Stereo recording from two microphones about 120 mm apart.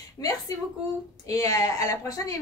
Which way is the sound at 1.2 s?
30° left (ahead or behind).